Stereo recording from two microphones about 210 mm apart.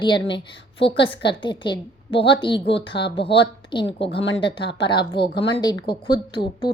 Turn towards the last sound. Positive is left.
turn(degrees=20)  # may be behind; listen again after turning